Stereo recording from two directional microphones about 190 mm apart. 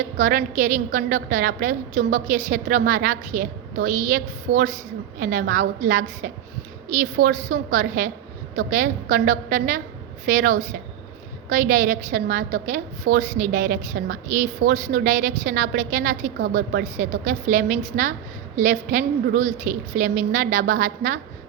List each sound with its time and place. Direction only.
0.2 s a woman's voice: 45° right (ahead or behind)